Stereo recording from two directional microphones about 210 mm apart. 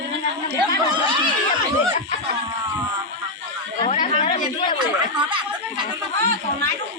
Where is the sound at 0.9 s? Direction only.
25° right (ahead or behind).